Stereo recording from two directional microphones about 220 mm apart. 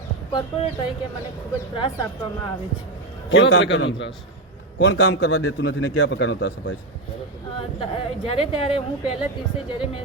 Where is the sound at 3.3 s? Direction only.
50° left (ahead or behind).